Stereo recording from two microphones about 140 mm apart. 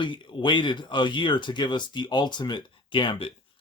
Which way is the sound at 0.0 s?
35° left (ahead or behind).